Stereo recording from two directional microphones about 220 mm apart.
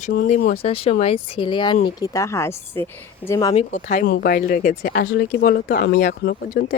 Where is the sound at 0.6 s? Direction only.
25° left (ahead or behind).